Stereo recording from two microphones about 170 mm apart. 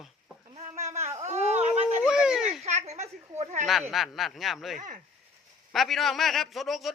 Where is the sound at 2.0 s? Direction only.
5° right (ahead or behind).